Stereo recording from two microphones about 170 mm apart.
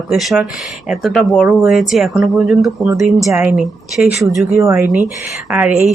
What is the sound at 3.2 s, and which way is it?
Speech, 10° right (ahead or behind).